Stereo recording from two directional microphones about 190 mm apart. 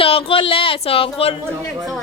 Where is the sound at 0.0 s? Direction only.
30° left (ahead or behind).